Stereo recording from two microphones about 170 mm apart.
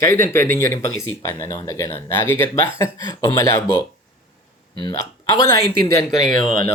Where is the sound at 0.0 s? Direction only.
15° left (ahead or behind).